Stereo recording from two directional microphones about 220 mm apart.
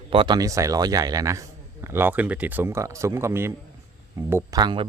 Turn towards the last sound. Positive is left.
turn(degrees=-20)  # may be behind; listen again after turning